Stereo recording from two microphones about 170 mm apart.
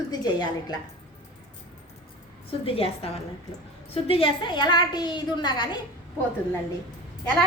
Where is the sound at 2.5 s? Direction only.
35° left (ahead or behind).